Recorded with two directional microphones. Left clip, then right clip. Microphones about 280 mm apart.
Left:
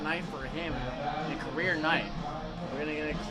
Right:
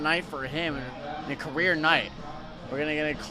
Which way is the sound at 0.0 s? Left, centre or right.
Right.